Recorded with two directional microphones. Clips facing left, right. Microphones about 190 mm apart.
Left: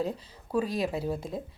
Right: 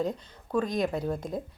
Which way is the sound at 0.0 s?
5° left (ahead or behind).